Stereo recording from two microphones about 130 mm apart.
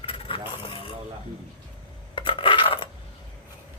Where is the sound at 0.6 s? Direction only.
45° left (ahead or behind).